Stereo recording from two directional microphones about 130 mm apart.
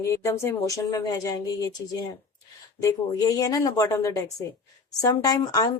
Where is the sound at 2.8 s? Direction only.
25° left (ahead or behind).